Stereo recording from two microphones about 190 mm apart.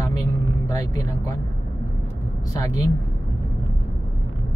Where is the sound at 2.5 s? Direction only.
15° left (ahead or behind).